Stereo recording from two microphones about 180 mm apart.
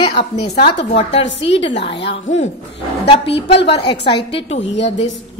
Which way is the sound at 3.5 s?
30° left (ahead or behind).